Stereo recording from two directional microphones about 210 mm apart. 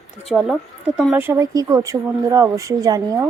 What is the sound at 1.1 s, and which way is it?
Speech, 10° right (ahead or behind).